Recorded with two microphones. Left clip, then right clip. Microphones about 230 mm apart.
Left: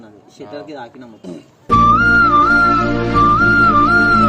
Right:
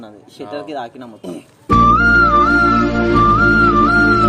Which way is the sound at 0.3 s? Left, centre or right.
Centre.